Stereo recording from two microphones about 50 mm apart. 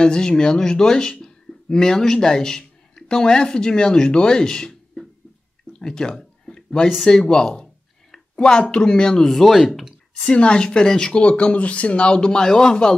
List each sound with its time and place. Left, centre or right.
0.0 s speech: centre
5.7 s a sound: centre
7.1 s speech: centre
10.1 s speech: left
11.2 s speech: left